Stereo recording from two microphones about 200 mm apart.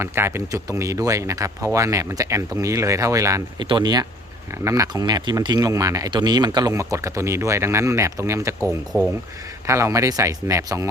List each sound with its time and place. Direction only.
0.0 s speech: 10° right (ahead or behind)